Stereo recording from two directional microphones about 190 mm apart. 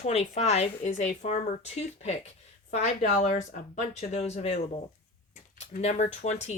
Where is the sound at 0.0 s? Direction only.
35° left (ahead or behind).